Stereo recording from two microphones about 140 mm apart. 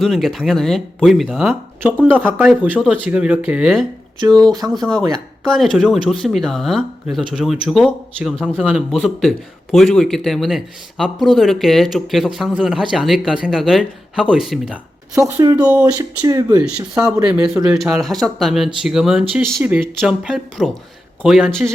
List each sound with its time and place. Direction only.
0.0 s speech: centre (ahead or behind)
2.0 s speech: 10° right (ahead or behind)
15.1 s speech: 25° right (ahead or behind)
15.5 s speech: 10° right (ahead or behind)
16.2 s speech: 25° right (ahead or behind)
16.6 s speech: 5° right (ahead or behind)